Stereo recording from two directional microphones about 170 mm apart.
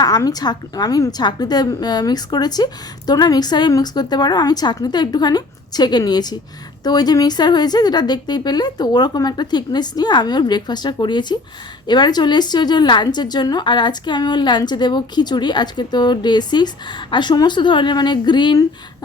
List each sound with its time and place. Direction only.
0.0 s a woman's voice: 25° left (ahead or behind)